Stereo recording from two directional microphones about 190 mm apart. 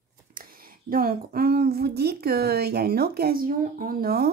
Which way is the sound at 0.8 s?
50° right (ahead or behind).